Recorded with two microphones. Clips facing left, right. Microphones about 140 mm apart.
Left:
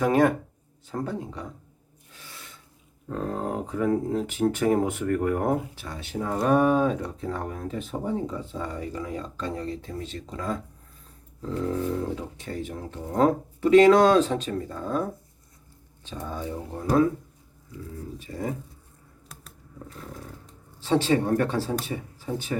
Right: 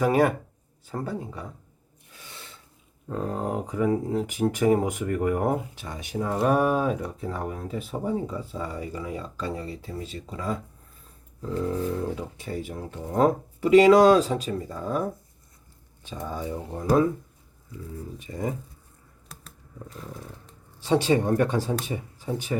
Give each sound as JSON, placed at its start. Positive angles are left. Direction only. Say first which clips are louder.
{"t": 0.0, "sound": "speech", "louder": "left 1 dB", "side_deg": -10}
{"t": 2.3, "sound": "a sound", "louder": "right 2 dB", "side_deg": -30}
{"t": 3.1, "sound": "speech", "louder": "right 1 dB", "side_deg": -10}
{"t": 16.2, "sound": "speech", "louder": "right 1 dB", "side_deg": -10}
{"t": 18.2, "sound": "speech", "louder": "right 1 dB", "side_deg": -15}
{"t": 20.7, "sound": "speech", "louder": "right 1 dB", "side_deg": -15}